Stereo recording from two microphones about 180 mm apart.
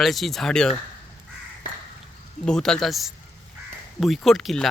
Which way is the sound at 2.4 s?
5° left (ahead or behind).